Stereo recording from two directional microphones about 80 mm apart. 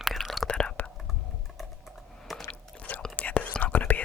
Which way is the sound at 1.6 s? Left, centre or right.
Centre.